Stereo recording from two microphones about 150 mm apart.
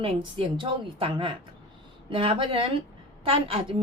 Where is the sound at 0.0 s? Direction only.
35° right (ahead or behind).